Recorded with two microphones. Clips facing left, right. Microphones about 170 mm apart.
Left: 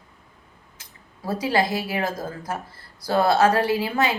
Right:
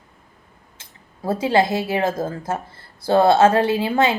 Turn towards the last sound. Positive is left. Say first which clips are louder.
# right 4 dB
turn(degrees=-25)  # may be behind; listen again after turning